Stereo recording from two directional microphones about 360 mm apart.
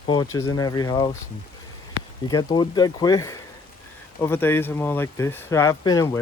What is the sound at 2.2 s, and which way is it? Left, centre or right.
Speech, centre.